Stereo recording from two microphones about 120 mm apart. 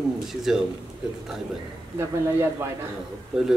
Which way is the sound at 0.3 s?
5° right (ahead or behind).